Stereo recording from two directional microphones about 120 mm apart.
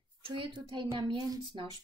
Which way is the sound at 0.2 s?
40° right (ahead or behind).